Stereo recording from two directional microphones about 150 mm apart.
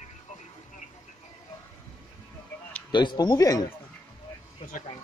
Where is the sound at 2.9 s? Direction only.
30° left (ahead or behind).